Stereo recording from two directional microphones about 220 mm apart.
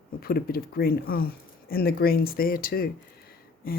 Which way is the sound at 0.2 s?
45° left (ahead or behind).